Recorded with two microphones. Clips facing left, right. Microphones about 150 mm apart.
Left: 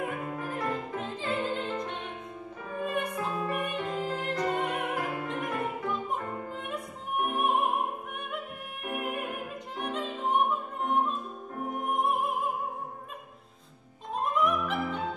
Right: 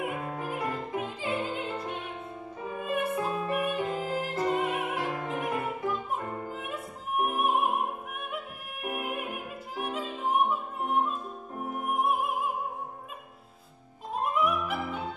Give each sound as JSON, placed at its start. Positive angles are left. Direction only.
{"t": 0.0, "sound": "music", "side_deg": -10}
{"t": 8.8, "sound": "music", "side_deg": -5}
{"t": 14.3, "sound": "music", "side_deg": -10}